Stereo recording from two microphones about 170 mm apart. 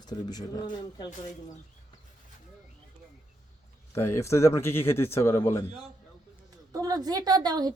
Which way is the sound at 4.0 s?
15° left (ahead or behind).